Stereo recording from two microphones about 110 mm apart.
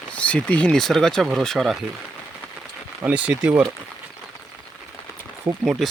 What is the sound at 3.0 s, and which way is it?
Speech, 10° right (ahead or behind).